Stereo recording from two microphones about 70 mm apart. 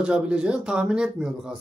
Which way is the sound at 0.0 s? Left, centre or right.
Centre.